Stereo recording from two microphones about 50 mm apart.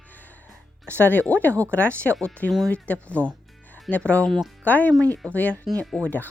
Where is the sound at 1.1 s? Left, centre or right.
Left.